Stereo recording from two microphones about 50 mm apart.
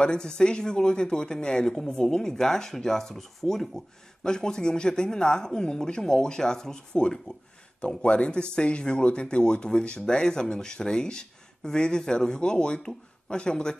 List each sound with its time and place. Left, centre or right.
0.0 s speech: centre